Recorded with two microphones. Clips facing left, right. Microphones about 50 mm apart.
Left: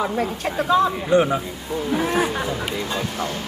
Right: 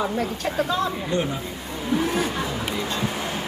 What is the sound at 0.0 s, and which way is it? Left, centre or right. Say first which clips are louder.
A man's voice: left 2 dB; centre.